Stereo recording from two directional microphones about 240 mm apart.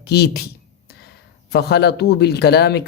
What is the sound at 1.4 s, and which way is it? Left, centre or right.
Speech, left.